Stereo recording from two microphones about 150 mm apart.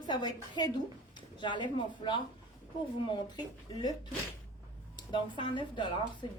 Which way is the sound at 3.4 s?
30° left (ahead or behind).